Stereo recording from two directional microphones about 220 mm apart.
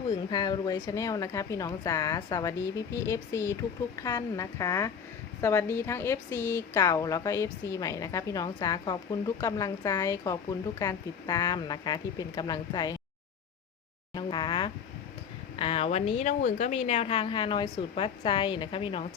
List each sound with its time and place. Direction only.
0.3 s a woman's voice: 20° left (ahead or behind)
14.1 s a woman's voice: 20° left (ahead or behind)